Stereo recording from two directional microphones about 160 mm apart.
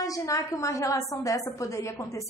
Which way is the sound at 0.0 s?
20° left (ahead or behind).